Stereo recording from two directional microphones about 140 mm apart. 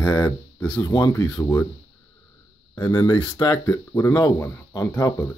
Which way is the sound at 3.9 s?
15° left (ahead or behind).